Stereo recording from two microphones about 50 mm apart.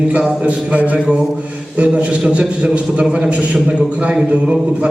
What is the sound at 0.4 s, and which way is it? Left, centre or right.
A man's voice, right.